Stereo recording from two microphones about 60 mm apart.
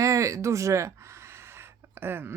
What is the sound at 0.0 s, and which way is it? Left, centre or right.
Speech, right.